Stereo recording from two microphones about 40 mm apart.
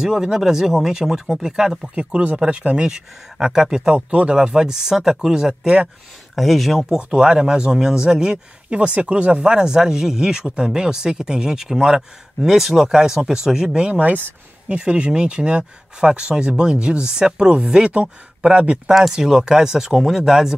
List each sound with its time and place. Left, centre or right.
0.0 s speech: centre
2.0 s speech: right
2.9 s speech: centre
4.5 s speech: centre
6.3 s speech: centre
7.0 s speech: right
8.6 s speech: right
14.7 s speech: right
18.9 s speech: centre